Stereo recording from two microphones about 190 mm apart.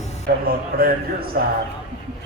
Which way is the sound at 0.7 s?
50° right (ahead or behind).